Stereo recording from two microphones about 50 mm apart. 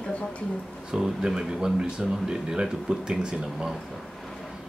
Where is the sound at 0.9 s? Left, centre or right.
Centre.